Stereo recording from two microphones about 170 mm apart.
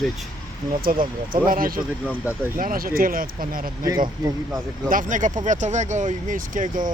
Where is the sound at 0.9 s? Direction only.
55° right (ahead or behind).